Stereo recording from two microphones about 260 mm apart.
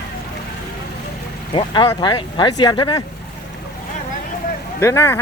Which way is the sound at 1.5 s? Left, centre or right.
Centre.